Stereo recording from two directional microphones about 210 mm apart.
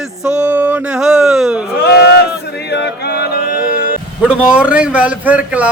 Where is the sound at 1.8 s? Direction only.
50° left (ahead or behind).